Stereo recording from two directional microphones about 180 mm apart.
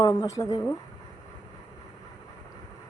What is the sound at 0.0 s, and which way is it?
Speech, 20° left (ahead or behind).